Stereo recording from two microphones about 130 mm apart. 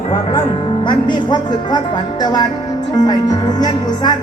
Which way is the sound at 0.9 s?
35° left (ahead or behind).